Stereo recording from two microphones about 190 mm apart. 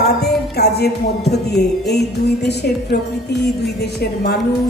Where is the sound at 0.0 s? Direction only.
60° left (ahead or behind).